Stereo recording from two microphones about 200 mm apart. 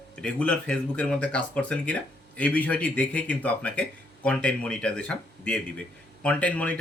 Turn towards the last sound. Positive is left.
turn(degrees=5)  # may be behind; listen again after turning